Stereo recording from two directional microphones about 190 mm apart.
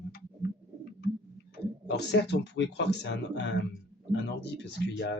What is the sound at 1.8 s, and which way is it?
Speech, 60° left (ahead or behind).